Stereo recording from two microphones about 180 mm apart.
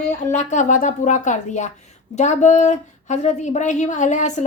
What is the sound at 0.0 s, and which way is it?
A woman's voice, 40° left (ahead or behind).